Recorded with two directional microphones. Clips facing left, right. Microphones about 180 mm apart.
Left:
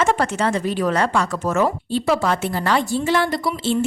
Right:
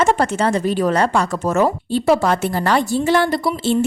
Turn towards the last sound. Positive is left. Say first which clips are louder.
# right 3 dB
turn(degrees=-40)  # may be behind; listen again after turning